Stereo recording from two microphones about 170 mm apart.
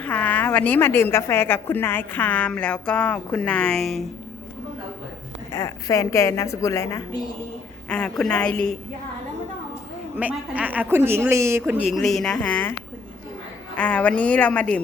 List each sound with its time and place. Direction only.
0.0 s a woman's voice: 10° left (ahead or behind)
5.5 s a woman's voice: 15° left (ahead or behind)
10.2 s a woman's voice: 10° right (ahead or behind); by 12.7 s 10° left (ahead or behind)
13.7 s a woman's voice: 10° left (ahead or behind)